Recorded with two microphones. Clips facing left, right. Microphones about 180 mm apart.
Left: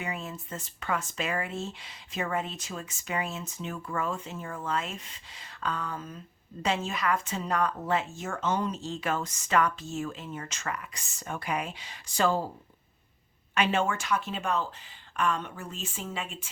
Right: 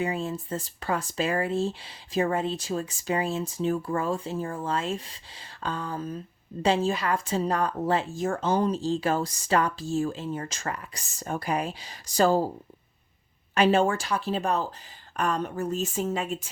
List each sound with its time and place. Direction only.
0.0 s a woman's voice: 30° right (ahead or behind)
13.5 s a woman's voice: 35° right (ahead or behind)